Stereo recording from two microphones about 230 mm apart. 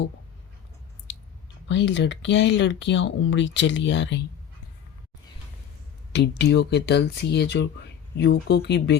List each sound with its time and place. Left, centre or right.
1.6 s speech: left
6.1 s speech: left